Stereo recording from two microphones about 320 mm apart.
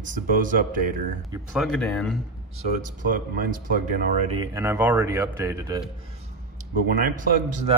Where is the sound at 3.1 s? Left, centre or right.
Right.